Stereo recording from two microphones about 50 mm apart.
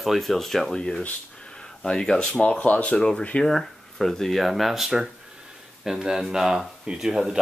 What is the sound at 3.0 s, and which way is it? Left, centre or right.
Speech, centre.